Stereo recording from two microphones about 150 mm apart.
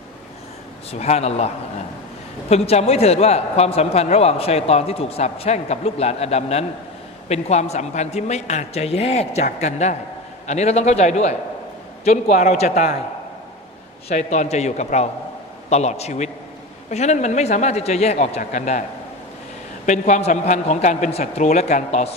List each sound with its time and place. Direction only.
0.9 s a man's voice: 45° left (ahead or behind)
2.5 s a man's voice: 45° left (ahead or behind)
14.0 s a man's voice: 50° left (ahead or behind)
19.9 s a man's voice: 50° left (ahead or behind)